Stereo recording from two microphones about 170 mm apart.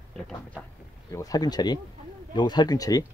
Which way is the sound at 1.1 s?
20° left (ahead or behind).